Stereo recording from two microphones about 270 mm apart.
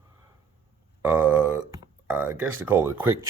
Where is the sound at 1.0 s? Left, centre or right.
Centre.